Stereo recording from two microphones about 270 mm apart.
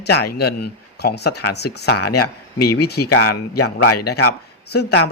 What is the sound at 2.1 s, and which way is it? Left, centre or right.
Speech, left.